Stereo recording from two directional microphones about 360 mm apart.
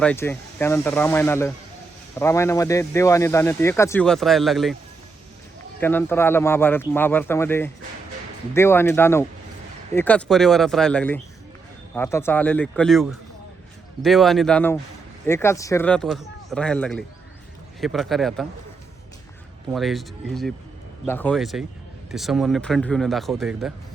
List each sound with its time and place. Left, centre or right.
0.0 s speech: centre
5.8 s speech: centre
19.7 s speech: centre